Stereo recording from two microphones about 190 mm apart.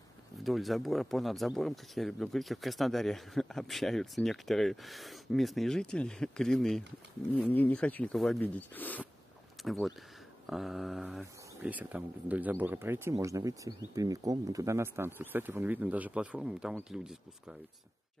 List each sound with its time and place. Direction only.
0.4 s speech: centre (ahead or behind)